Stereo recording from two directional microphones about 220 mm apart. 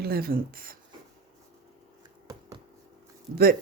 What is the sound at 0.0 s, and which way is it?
Speech, 45° right (ahead or behind).